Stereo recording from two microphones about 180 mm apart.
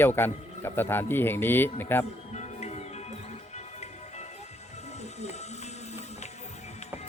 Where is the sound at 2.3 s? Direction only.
40° left (ahead or behind).